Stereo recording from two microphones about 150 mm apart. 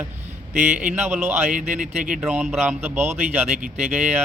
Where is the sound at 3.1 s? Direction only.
50° right (ahead or behind).